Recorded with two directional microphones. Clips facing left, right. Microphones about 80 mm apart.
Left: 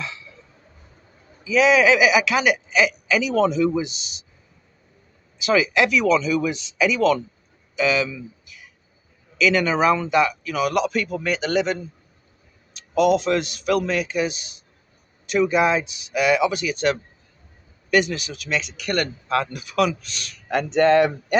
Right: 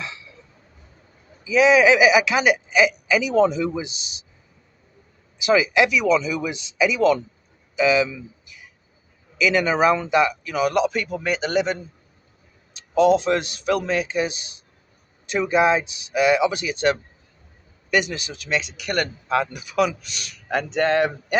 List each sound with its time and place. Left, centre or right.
1.5 s speech: right
5.4 s speech: centre
17.9 s speech: right
20.7 s speech: centre